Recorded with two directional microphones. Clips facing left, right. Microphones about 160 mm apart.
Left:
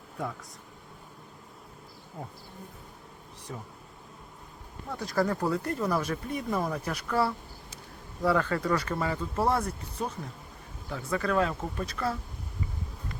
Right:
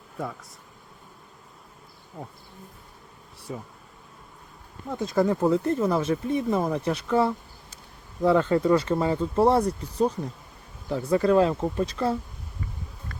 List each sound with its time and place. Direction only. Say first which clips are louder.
3.5 s bee: right 5 dB; 10° right (ahead or behind)
4.9 s speech: right 5 dB; 20° right (ahead or behind)